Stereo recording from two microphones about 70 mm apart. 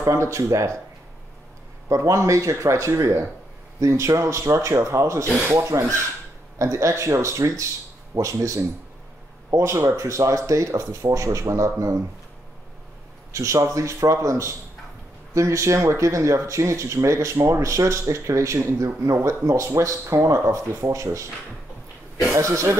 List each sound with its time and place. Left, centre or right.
0.1 s speech: right
1.9 s speech: right
13.3 s speech: right
22.3 s speech: right